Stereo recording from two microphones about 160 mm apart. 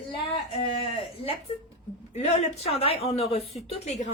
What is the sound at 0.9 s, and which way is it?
Speech, 35° left (ahead or behind).